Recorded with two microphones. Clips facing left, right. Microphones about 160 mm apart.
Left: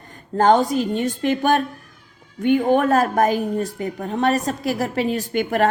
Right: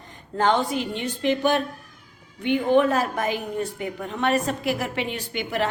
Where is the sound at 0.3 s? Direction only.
40° left (ahead or behind).